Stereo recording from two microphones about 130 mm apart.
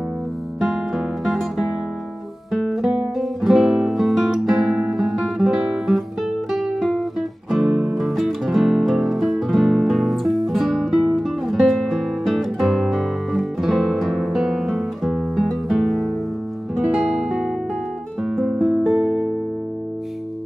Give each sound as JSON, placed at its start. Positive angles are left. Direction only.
{"t": 0.6, "sound": "music", "side_deg": 0}
{"t": 2.5, "sound": "guitar", "side_deg": 0}
{"t": 16.7, "sound": "music", "side_deg": -5}